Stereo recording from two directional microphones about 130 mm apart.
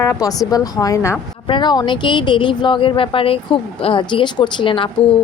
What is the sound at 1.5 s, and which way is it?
Speech, 35° left (ahead or behind).